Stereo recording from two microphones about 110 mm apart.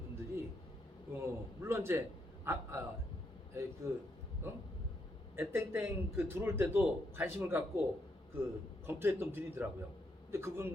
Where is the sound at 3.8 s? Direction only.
25° right (ahead or behind).